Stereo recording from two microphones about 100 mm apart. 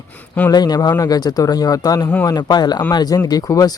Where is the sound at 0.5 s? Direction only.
40° left (ahead or behind).